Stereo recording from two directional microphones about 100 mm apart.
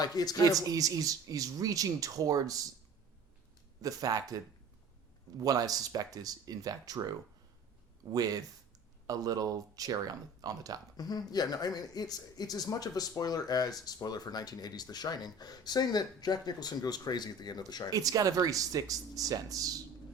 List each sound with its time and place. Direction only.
0.0 s speech: 40° left (ahead or behind)
0.7 s speech: 35° right (ahead or behind)
3.8 s speech: 35° right (ahead or behind)
5.4 s speech: 40° right (ahead or behind)
10.9 s speech: 40° left (ahead or behind)
17.9 s speech: 35° right (ahead or behind)